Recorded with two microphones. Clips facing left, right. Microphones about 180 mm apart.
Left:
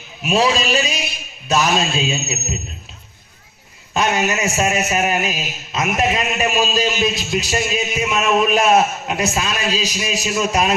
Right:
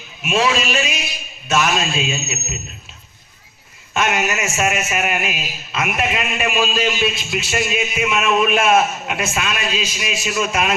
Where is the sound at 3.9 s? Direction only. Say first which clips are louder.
Left 1 dB; 35° left (ahead or behind).